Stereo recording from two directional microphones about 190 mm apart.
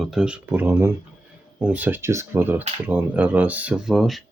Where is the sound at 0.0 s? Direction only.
5° right (ahead or behind).